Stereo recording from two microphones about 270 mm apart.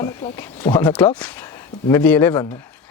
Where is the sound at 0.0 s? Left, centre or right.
Centre.